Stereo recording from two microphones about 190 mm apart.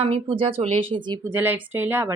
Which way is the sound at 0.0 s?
30° right (ahead or behind).